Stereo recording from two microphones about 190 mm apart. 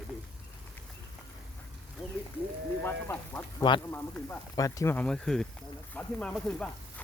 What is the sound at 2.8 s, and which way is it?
Speech, 10° left (ahead or behind).